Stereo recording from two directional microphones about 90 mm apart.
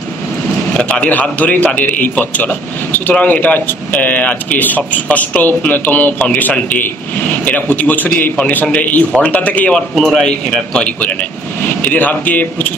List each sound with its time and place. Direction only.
0.7 s a man's voice: 10° left (ahead or behind)
9.8 s a man's voice: centre (ahead or behind); by 12.7 s 20° left (ahead or behind)